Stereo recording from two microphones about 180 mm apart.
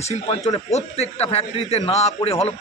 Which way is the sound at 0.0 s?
35° left (ahead or behind).